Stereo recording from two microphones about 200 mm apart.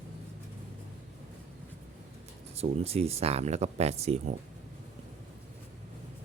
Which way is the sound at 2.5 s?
30° right (ahead or behind).